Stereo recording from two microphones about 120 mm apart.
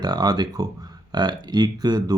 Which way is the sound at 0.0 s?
35° right (ahead or behind).